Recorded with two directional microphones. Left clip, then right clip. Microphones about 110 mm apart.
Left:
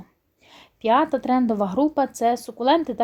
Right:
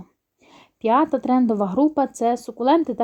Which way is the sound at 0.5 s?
35° right (ahead or behind).